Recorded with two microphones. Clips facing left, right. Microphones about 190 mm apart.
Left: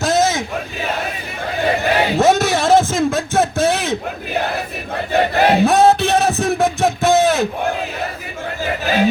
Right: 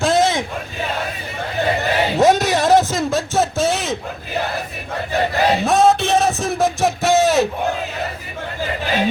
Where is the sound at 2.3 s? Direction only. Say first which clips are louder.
Left 1 dB; 50° left (ahead or behind).